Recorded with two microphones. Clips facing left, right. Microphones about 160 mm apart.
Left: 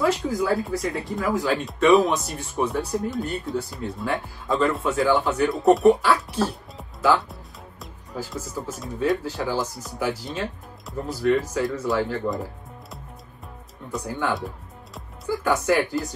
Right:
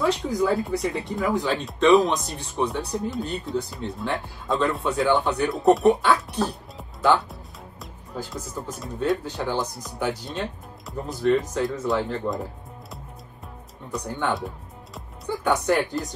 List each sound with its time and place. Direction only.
0.0 s speech: centre (ahead or behind)
13.9 s speech: centre (ahead or behind)
15.0 s music: centre (ahead or behind)
15.6 s speech: centre (ahead or behind)